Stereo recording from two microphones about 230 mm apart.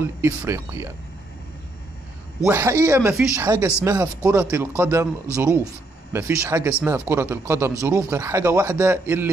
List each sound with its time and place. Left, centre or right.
0.0 s speech: centre
2.4 s speech: centre